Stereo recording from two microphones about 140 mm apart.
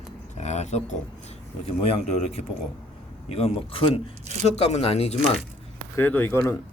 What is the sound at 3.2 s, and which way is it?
Speech, 45° left (ahead or behind).